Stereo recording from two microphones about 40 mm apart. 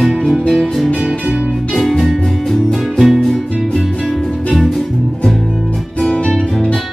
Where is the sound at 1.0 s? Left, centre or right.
Centre.